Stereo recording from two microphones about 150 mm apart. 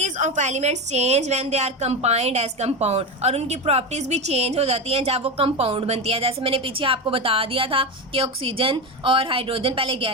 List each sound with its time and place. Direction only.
0.0 s a woman's voice: 50° right (ahead or behind); by 10.1 s 35° right (ahead or behind)